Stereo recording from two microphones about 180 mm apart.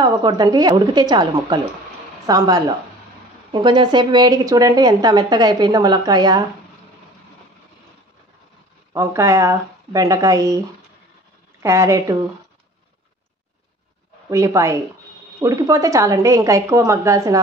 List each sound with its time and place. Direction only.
0.0 s speech: 25° right (ahead or behind)
8.9 s a woman's voice: 15° right (ahead or behind)
11.6 s a woman's voice: 15° right (ahead or behind)
14.3 s a woman's voice: 15° right (ahead or behind)